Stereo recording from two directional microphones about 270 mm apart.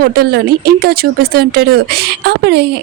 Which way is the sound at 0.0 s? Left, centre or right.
Right.